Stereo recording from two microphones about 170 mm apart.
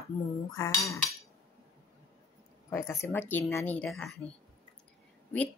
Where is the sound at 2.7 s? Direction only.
15° left (ahead or behind).